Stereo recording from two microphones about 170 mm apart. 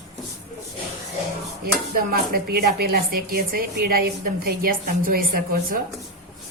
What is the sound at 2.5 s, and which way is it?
Speech, 65° right (ahead or behind).